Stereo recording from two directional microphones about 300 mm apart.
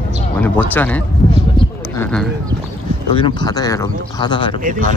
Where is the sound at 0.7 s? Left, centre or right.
Centre.